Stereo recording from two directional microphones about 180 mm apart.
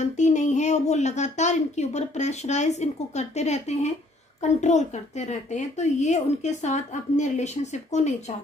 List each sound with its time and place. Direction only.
0.0 s speech: 40° left (ahead or behind)